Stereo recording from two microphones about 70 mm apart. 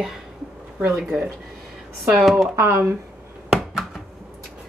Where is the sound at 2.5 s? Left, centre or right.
Right.